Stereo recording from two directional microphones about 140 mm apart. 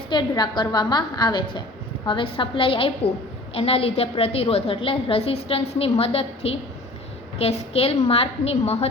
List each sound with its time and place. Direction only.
0.1 s a woman's voice: 30° left (ahead or behind); by 8.9 s 50° left (ahead or behind)